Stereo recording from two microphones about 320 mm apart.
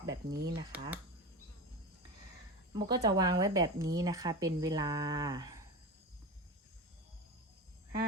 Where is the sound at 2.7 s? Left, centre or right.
Centre.